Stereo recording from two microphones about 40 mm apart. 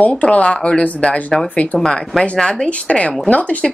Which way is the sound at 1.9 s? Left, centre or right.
Centre.